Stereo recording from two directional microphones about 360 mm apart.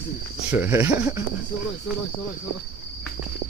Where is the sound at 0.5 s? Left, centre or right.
Centre.